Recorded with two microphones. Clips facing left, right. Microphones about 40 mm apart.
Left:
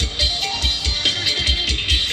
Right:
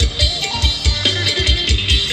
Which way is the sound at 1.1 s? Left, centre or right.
Right.